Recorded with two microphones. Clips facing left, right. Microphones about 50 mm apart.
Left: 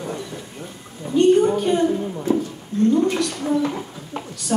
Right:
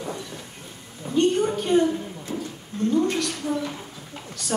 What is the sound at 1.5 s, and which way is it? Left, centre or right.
A woman's voice, left.